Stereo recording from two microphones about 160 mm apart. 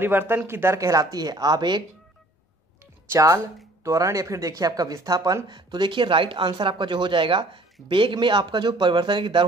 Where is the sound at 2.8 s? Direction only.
20° right (ahead or behind).